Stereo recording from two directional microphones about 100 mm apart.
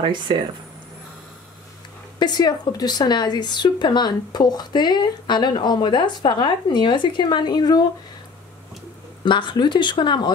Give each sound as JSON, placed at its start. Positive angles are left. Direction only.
{"t": 0.0, "sound": "speech", "side_deg": -50}
{"t": 2.1, "sound": "speech", "side_deg": 45}
{"t": 9.2, "sound": "speech", "side_deg": 50}